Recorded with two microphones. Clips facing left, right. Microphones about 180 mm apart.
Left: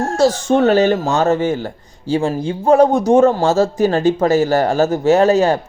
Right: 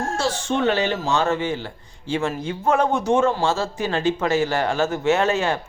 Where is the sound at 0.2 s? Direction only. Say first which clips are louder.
Left 11 dB; 40° left (ahead or behind).